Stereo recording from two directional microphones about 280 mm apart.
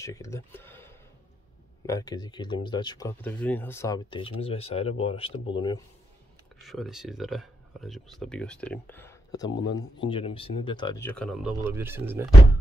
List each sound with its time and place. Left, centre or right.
0.0 s speech: centre
6.6 s speech: centre